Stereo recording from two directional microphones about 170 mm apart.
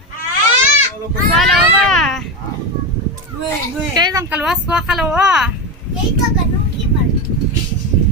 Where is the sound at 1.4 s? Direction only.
5° left (ahead or behind).